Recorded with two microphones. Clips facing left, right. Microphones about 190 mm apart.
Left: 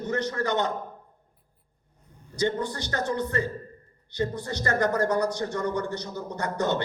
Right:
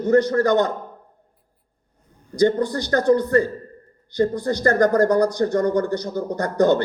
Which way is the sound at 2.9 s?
45° right (ahead or behind).